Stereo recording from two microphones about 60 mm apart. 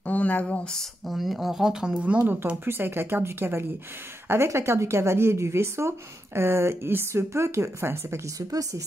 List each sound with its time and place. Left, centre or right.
0.0 s a sound: left
0.7 s speech: centre
2.0 s a woman's voice: right
8.4 s speech: right